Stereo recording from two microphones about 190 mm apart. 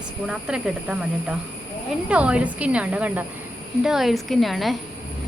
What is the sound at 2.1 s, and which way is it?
A woman's voice, 5° right (ahead or behind).